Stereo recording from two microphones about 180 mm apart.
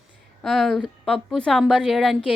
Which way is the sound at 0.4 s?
Centre (ahead or behind).